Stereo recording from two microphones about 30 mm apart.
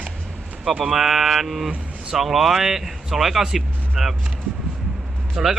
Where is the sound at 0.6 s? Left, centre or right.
Centre.